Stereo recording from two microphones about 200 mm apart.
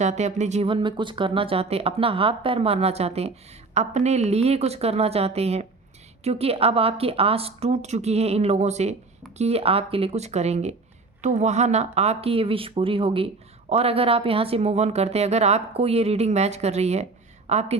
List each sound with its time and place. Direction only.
0.0 s speech: 35° right (ahead or behind)